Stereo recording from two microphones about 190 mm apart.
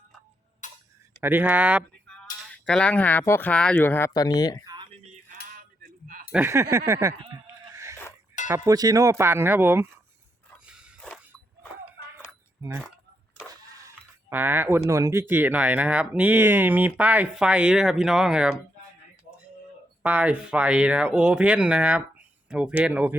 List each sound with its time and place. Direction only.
0.6 s tick-tock: 40° left (ahead or behind)
1.2 s speech: 10° right (ahead or behind)
2.0 s speech: 5° left (ahead or behind); by 4.6 s 20° left (ahead or behind)
4.6 s a sound: 20° right (ahead or behind)
6.3 s speech: 15° right (ahead or behind)
7.4 s a sound: 15° right (ahead or behind)
8.4 s speech: 15° right (ahead or behind)
10.7 s a sound: centre (ahead or behind)
12.6 s speech: 15° right (ahead or behind)
20.0 s speech: 5° right (ahead or behind)